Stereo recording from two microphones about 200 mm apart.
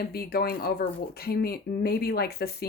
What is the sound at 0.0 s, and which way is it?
Speech, 50° left (ahead or behind).